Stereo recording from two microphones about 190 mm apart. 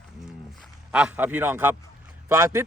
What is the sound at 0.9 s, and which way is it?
A man's voice, 5° right (ahead or behind).